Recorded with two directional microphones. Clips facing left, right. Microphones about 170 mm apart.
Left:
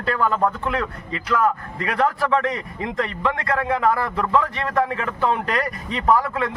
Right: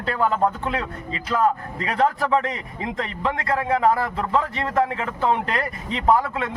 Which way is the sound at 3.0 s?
25° right (ahead or behind).